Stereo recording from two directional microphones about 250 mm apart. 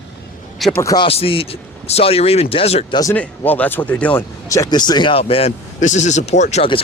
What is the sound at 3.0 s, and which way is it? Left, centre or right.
Speech, centre.